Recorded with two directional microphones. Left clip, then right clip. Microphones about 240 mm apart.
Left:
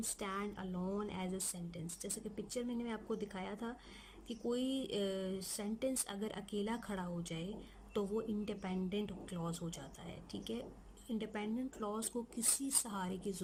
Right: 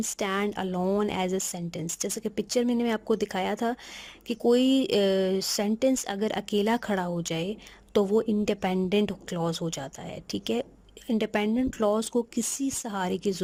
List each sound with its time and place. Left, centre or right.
0.2 s speech: right